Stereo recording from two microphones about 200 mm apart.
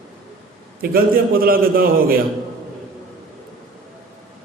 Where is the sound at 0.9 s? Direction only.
45° right (ahead or behind).